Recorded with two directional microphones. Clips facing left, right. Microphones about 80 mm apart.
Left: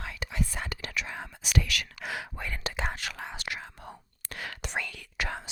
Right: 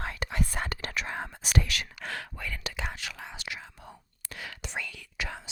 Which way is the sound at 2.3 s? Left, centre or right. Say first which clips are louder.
Left 2 dB; left.